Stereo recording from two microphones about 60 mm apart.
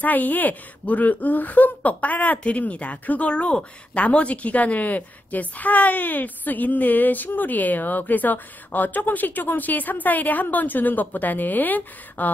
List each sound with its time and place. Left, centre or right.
0.0 s speech: left